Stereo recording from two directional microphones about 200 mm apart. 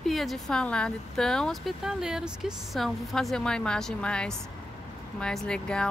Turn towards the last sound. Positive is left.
turn(degrees=5)  # may be behind; listen again after turning